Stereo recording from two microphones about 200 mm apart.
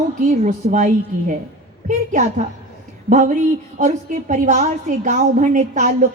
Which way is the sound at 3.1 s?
40° right (ahead or behind).